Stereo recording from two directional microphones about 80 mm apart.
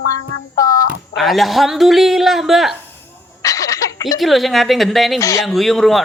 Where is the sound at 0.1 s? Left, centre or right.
Left.